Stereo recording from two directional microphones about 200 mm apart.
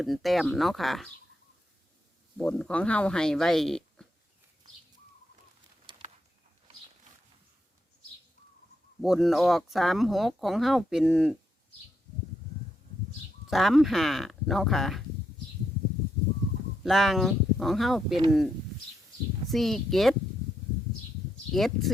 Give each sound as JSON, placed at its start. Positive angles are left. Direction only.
{"t": 0.0, "sound": "speech", "side_deg": 0}
{"t": 2.4, "sound": "speech", "side_deg": 5}
{"t": 5.9, "sound": "a sound", "side_deg": -25}
{"t": 9.0, "sound": "speech", "side_deg": 0}
{"t": 13.5, "sound": "speech", "side_deg": 0}
{"t": 16.8, "sound": "speech", "side_deg": 0}
{"t": 19.5, "sound": "speech", "side_deg": 0}
{"t": 21.5, "sound": "speech", "side_deg": 0}